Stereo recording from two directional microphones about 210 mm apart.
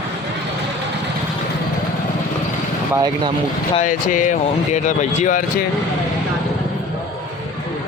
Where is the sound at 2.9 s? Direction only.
20° right (ahead or behind).